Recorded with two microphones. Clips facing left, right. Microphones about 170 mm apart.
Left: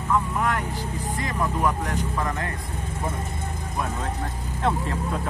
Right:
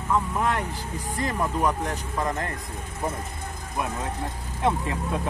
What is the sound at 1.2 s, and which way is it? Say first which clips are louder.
Speech: right 1 dB; 35° right (ahead or behind).